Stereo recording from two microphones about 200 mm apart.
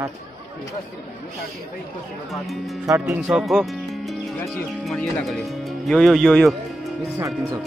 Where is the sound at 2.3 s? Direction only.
Centre (ahead or behind).